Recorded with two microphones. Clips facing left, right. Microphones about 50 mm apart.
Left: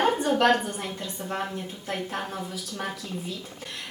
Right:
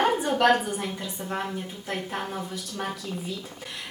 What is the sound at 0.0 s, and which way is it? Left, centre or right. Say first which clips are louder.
A woman's voice: even; centre.